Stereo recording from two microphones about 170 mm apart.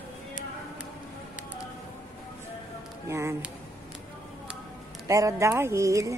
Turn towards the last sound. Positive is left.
turn(degrees=-20)  # may be behind; listen again after turning